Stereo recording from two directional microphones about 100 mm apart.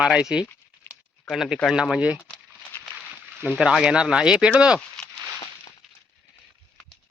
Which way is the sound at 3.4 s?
5° right (ahead or behind).